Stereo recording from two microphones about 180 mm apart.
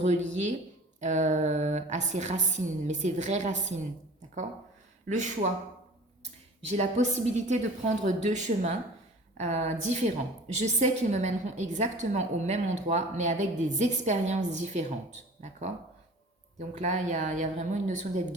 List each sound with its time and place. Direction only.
0.0 s a woman's voice: 40° right (ahead or behind)
5.0 s speech: 45° right (ahead or behind)
6.7 s a woman's voice: 40° right (ahead or behind)